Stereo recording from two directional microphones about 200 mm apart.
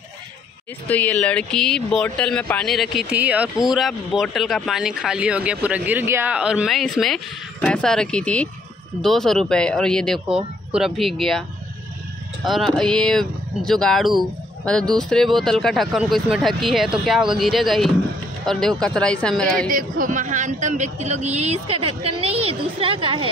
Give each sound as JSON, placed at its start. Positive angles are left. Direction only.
{"t": 0.8, "sound": "speech", "side_deg": 10}
{"t": 12.4, "sound": "speech", "side_deg": 0}
{"t": 19.7, "sound": "a man's voice", "side_deg": -40}